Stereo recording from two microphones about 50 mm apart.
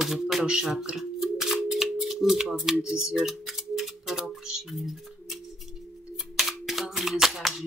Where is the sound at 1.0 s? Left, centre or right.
Centre.